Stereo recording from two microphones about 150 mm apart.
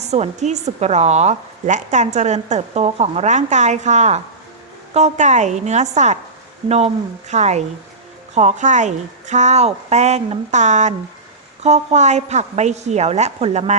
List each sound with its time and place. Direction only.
0.0 s a woman's voice: 45° right (ahead or behind)